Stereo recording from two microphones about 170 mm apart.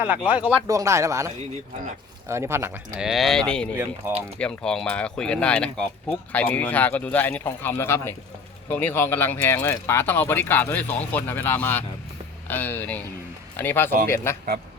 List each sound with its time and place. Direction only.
0.0 s speech: 5° right (ahead or behind)
0.7 s speech: 20° right (ahead or behind)
3.0 s speech: centre (ahead or behind)
4.0 s speech: 10° right (ahead or behind)
4.4 s speech: 5° left (ahead or behind)